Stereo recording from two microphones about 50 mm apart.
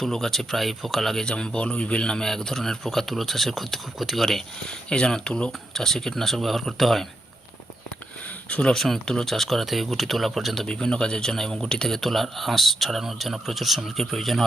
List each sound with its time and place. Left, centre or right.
0.0 s speech: centre
1.2 s speech: centre
4.9 s speech: centre
5.5 s speech: centre
8.6 s speech: centre
10.7 s speech: centre